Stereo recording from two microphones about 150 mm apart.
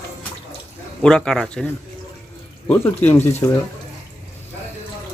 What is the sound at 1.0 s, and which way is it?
Speech, 5° left (ahead or behind).